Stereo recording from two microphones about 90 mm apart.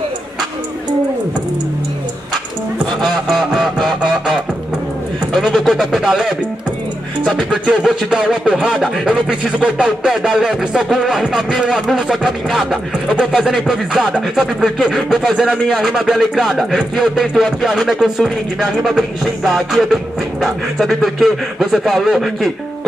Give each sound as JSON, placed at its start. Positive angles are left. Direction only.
{"t": 3.3, "sound": "music", "side_deg": -5}
{"t": 5.3, "sound": "a sound", "side_deg": 0}
{"t": 7.3, "sound": "speech", "side_deg": -5}